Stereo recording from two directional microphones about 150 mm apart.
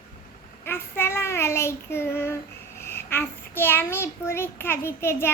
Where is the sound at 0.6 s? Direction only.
15° left (ahead or behind).